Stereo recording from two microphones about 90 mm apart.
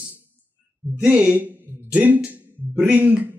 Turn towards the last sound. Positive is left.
turn(degrees=-15)  # may be behind; listen again after turning